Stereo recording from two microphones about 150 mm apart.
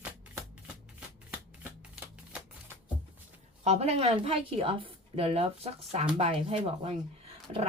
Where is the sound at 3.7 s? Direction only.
45° right (ahead or behind).